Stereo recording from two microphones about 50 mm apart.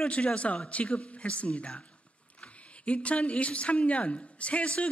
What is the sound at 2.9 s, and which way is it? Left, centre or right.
A man's voice, left.